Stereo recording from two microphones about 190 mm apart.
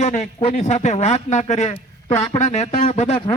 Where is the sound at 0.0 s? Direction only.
40° left (ahead or behind).